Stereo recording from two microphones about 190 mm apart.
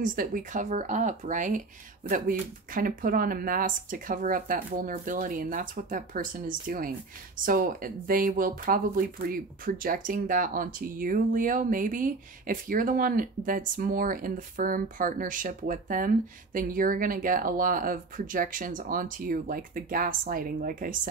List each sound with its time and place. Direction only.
0.0 s speech: 45° right (ahead or behind)